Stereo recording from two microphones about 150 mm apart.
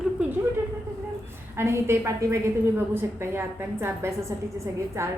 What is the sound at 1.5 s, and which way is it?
A woman's voice, 15° right (ahead or behind).